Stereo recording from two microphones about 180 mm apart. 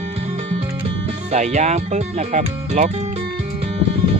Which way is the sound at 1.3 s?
40° right (ahead or behind).